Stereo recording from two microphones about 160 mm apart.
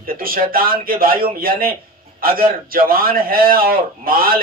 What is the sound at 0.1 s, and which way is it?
A man's voice, 65° right (ahead or behind).